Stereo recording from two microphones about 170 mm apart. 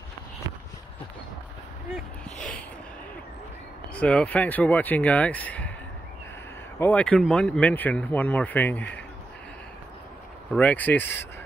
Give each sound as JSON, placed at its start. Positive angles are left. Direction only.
{"t": 2.2, "sound": "speech", "side_deg": 5}
{"t": 3.9, "sound": "speech", "side_deg": 5}
{"t": 6.8, "sound": "speech", "side_deg": 10}
{"t": 10.5, "sound": "speech", "side_deg": 10}